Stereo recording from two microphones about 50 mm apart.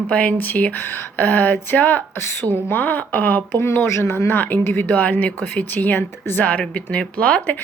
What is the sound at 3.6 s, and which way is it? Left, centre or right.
Speech, left.